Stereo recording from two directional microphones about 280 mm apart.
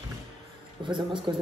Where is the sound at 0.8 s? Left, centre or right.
Centre.